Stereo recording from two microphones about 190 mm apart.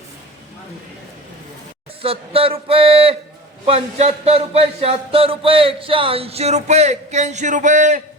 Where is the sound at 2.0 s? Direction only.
30° right (ahead or behind).